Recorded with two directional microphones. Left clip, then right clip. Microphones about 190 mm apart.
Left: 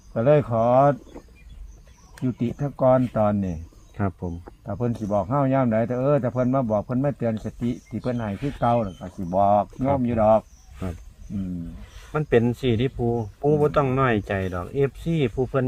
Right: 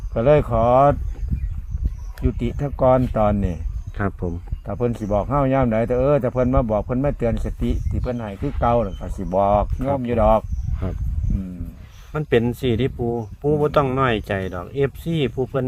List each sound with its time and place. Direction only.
0.1 s speech: 25° right (ahead or behind)
2.1 s speech: 30° right (ahead or behind)
12.1 s speech: 30° right (ahead or behind)